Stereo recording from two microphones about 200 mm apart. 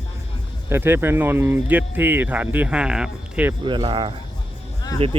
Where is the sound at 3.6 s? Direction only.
25° right (ahead or behind).